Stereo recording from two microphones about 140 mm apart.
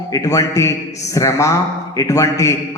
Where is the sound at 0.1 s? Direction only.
25° left (ahead or behind).